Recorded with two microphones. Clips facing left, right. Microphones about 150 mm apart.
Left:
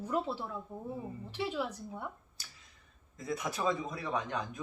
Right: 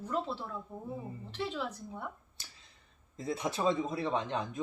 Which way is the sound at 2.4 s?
25° right (ahead or behind).